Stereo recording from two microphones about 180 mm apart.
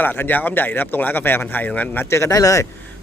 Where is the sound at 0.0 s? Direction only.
10° left (ahead or behind).